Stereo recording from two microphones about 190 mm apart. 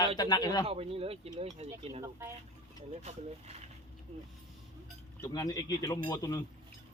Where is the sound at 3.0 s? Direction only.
35° right (ahead or behind).